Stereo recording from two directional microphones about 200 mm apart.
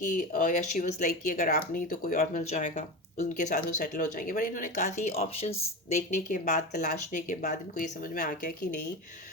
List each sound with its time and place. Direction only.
0.1 s speech: 40° left (ahead or behind)